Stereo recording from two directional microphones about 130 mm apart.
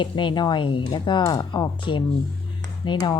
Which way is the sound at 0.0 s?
40° left (ahead or behind).